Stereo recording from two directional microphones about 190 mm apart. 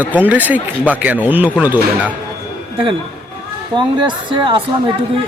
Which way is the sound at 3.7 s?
25° right (ahead or behind).